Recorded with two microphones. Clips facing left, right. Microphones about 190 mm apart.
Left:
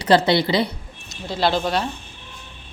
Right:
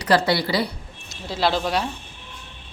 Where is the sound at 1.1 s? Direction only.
Centre (ahead or behind).